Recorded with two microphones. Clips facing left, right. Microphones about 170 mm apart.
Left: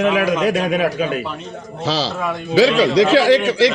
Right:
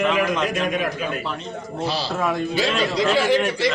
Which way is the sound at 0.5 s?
90° left.